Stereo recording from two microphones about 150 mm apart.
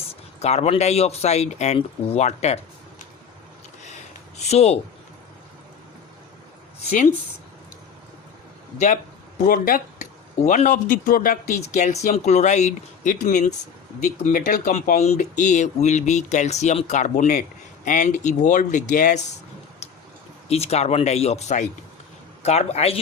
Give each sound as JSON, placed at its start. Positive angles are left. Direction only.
{"t": 0.1, "sound": "speech", "side_deg": 45}
{"t": 4.4, "sound": "speech", "side_deg": 45}
{"t": 9.4, "sound": "speech", "side_deg": 65}
{"t": 20.5, "sound": "speech", "side_deg": 45}